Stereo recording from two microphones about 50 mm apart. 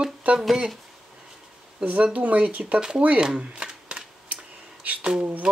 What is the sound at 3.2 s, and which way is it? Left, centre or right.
Shuffling cards, centre.